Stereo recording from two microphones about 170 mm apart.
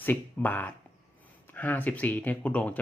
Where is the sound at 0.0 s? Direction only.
10° left (ahead or behind).